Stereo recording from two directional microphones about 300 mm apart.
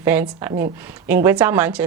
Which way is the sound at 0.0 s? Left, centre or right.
Centre.